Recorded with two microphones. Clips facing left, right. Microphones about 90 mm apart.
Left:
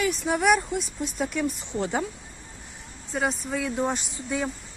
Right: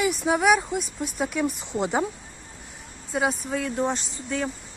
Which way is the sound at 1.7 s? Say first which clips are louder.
Right 3 dB; 20° right (ahead or behind).